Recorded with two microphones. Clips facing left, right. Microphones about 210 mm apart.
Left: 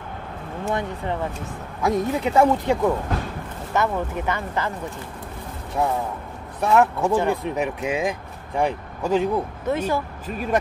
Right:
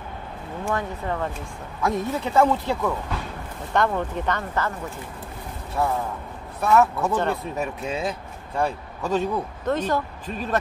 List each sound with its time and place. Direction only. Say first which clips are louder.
0.7 s speech: left 1 dB; 20° left (ahead or behind)
5.8 s speech: left 1 dB; 15° left (ahead or behind)